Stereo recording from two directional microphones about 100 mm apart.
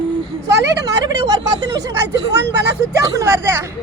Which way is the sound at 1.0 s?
40° right (ahead or behind).